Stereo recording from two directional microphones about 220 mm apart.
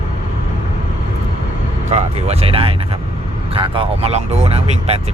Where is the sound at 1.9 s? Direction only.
30° right (ahead or behind).